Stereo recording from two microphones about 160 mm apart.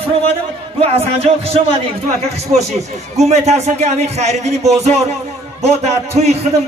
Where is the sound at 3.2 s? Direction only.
45° right (ahead or behind).